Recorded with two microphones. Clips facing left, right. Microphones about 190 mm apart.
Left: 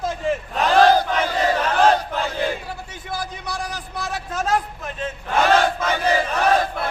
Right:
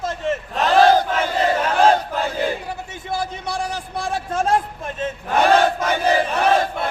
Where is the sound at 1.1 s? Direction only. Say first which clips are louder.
Right 1 dB; 10° right (ahead or behind).